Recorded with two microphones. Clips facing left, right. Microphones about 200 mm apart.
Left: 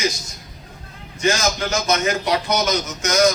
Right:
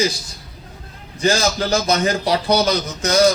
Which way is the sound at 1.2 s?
35° right (ahead or behind).